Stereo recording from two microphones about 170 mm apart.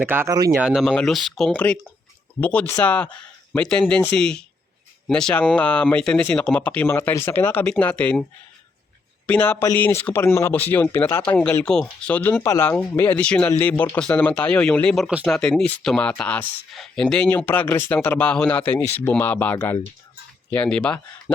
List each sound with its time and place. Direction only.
0.0 s speech: 10° right (ahead or behind); by 8.2 s 5° left (ahead or behind)
9.2 s speech: 10° left (ahead or behind)